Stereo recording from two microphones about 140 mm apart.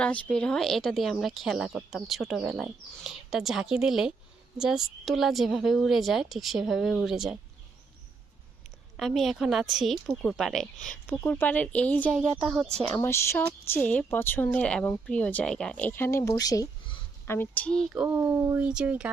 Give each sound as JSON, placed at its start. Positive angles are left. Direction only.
{"t": 0.0, "sound": "a woman's voice", "side_deg": 10}
{"t": 9.0, "sound": "a woman's voice", "side_deg": 0}
{"t": 11.0, "sound": "speech", "side_deg": 10}
{"t": 12.5, "sound": "a woman's voice", "side_deg": 0}
{"t": 12.7, "sound": "speech", "side_deg": -50}
{"t": 13.0, "sound": "speech", "side_deg": 20}
{"t": 17.8, "sound": "speech", "side_deg": -10}